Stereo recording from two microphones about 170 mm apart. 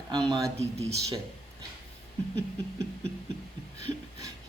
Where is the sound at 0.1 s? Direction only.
25° right (ahead or behind).